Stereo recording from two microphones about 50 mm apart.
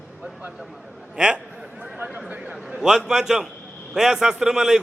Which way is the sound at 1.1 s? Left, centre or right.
Centre.